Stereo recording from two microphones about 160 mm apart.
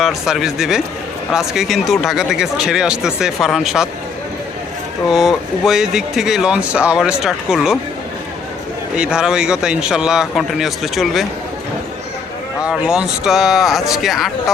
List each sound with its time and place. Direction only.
0.0 s speech: centre (ahead or behind)
5.0 s speech: centre (ahead or behind)
9.0 s speech: 5° right (ahead or behind)
12.6 s speech: 5° right (ahead or behind)